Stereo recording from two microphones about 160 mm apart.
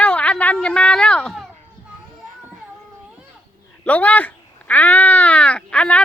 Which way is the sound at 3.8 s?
10° left (ahead or behind).